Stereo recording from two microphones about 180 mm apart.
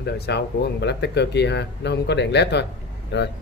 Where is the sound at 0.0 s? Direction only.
70° left (ahead or behind).